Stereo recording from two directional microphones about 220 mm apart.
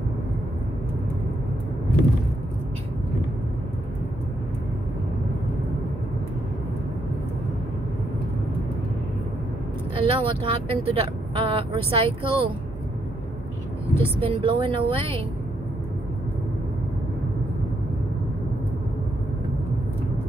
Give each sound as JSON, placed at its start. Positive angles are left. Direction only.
{"t": 9.9, "sound": "speech", "side_deg": -25}
{"t": 13.9, "sound": "speech", "side_deg": -25}